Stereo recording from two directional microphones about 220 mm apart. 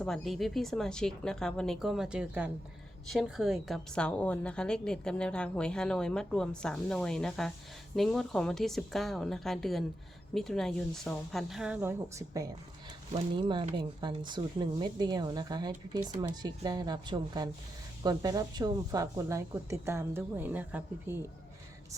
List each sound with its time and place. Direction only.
0.0 s a woman's voice: centre (ahead or behind); by 12.5 s 15° right (ahead or behind)
13.5 s a woman's voice: 20° right (ahead or behind)